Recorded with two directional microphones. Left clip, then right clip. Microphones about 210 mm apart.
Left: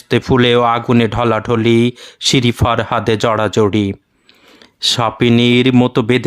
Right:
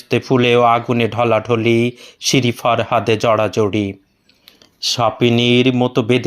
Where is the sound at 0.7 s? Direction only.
25° left (ahead or behind).